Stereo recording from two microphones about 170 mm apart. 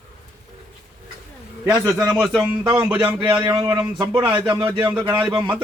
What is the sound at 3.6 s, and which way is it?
Speech, 20° right (ahead or behind).